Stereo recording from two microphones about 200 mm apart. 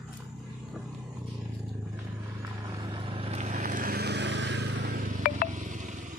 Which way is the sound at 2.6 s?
20° right (ahead or behind).